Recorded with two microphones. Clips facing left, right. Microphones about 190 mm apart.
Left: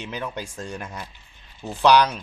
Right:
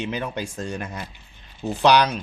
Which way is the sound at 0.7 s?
5° right (ahead or behind).